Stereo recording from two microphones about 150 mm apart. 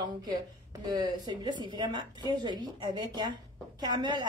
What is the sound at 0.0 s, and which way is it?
A woman's voice, 30° right (ahead or behind).